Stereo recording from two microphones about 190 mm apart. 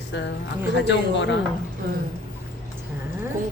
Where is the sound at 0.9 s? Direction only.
70° left (ahead or behind).